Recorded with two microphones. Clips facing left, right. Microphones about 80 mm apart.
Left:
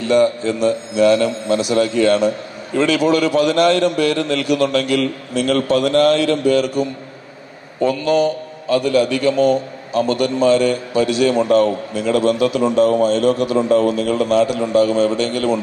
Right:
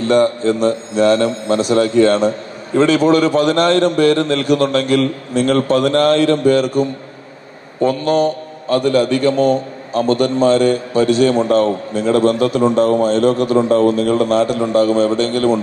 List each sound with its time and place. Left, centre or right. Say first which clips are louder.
0.0 s a man's voice: right 1 dB; right